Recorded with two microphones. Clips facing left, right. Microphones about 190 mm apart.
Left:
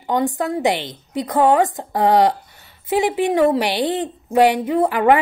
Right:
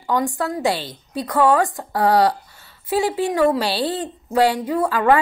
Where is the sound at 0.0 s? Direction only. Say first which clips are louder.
Left 2 dB; 20° left (ahead or behind).